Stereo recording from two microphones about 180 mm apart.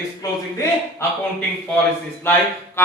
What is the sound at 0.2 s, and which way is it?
Speech, 15° left (ahead or behind).